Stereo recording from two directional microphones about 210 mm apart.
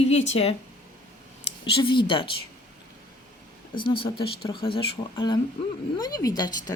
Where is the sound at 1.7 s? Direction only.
25° left (ahead or behind).